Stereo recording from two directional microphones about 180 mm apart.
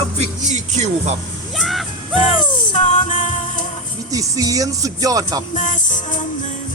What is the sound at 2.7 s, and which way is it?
Music, 40° left (ahead or behind).